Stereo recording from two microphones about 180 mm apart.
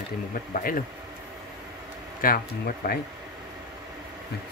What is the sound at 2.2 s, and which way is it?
Speech, 55° left (ahead or behind).